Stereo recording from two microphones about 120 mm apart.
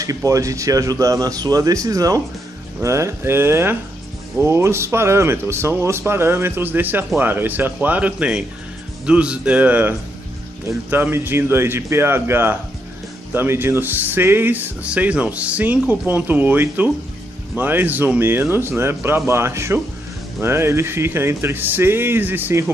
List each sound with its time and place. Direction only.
0.0 s speech: 30° right (ahead or behind)